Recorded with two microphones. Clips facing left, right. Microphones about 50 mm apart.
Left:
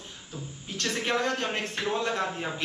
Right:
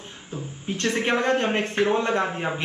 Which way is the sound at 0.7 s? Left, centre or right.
Right.